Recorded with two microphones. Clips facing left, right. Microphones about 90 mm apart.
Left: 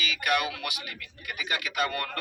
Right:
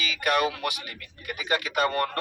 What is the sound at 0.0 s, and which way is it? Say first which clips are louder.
A man's voice: right 3 dB; 40° right (ahead or behind).